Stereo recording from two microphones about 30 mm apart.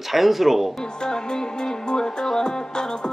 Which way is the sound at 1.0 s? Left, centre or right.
Left.